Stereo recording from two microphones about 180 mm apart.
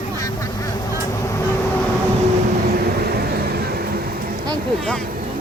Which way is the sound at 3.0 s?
60° right (ahead or behind).